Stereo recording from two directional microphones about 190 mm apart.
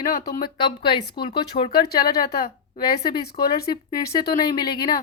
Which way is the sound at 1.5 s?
40° left (ahead or behind).